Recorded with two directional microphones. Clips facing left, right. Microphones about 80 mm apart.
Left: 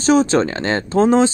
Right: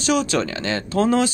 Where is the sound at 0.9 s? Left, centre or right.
Left.